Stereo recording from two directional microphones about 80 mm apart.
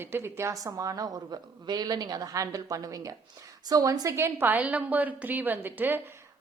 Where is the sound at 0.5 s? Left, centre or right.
Right.